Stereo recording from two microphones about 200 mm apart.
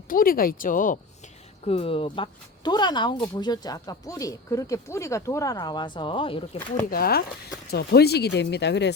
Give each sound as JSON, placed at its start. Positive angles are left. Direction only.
{"t": 0.1, "sound": "speech", "side_deg": 45}
{"t": 1.6, "sound": "speech", "side_deg": 30}
{"t": 6.9, "sound": "speech", "side_deg": 50}